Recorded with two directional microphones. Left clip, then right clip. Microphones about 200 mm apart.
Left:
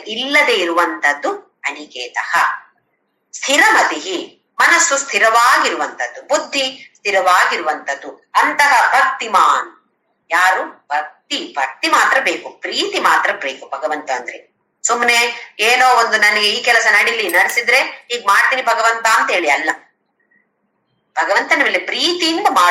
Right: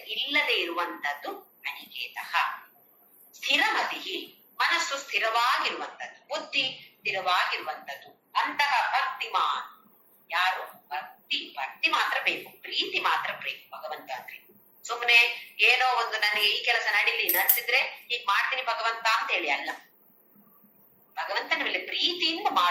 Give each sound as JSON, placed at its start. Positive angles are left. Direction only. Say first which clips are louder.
{"t": 0.1, "sound": "speech", "louder": "left 12 dB", "side_deg": 55}
{"t": 21.1, "sound": "speech", "louder": "left 15 dB", "side_deg": 55}